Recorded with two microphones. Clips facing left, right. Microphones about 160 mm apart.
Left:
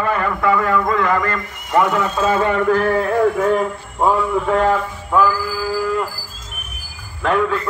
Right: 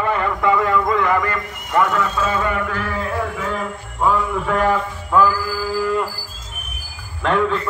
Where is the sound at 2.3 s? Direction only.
35° left (ahead or behind).